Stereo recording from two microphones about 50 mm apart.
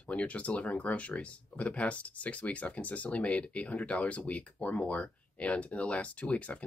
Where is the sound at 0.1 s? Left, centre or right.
Left.